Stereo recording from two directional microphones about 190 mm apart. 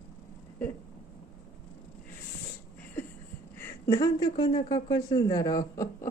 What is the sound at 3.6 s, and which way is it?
Speech, 15° left (ahead or behind).